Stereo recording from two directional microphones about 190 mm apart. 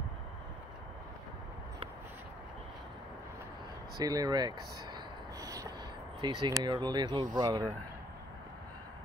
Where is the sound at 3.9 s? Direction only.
20° right (ahead or behind).